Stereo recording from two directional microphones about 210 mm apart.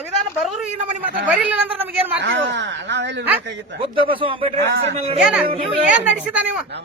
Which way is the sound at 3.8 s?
25° right (ahead or behind).